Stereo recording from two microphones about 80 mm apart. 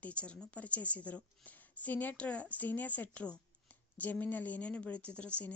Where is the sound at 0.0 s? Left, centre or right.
Centre.